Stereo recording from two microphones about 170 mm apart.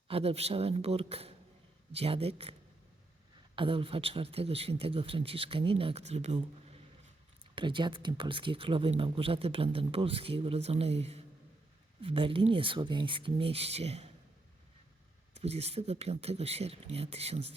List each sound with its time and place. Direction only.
0.1 s speech: 35° right (ahead or behind)
7.5 s speech: 30° right (ahead or behind)
15.4 s speech: 40° right (ahead or behind)